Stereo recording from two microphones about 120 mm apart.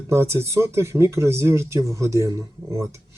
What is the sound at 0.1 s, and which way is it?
Speech, 20° right (ahead or behind).